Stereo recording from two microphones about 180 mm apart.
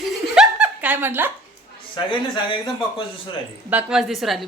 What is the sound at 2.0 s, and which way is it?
Speech, 25° left (ahead or behind).